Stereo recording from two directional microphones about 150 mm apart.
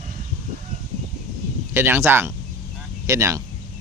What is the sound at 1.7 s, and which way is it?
Speech, 15° right (ahead or behind).